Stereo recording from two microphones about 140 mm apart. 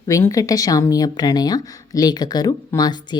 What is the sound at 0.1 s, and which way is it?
Speech, 25° left (ahead or behind).